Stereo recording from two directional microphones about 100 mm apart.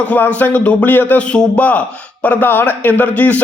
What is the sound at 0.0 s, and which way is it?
Speech, 15° left (ahead or behind).